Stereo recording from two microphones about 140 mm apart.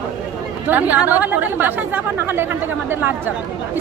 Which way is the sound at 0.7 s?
10° right (ahead or behind).